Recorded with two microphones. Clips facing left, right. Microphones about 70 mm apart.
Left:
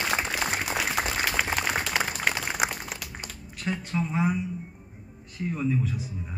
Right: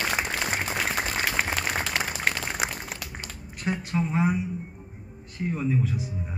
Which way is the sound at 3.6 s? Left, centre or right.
Centre.